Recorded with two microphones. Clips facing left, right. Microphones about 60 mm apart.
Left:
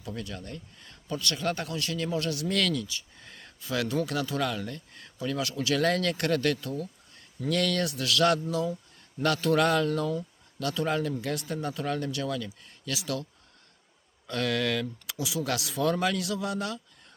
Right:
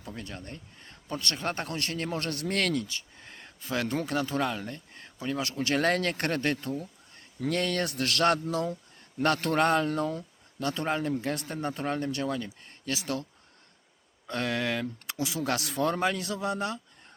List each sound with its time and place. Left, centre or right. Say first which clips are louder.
0.2 s speech: left 2 dB; right
14.3 s a man's voice: left 2 dB; right
15.9 s a man's voice: left 3 dB; right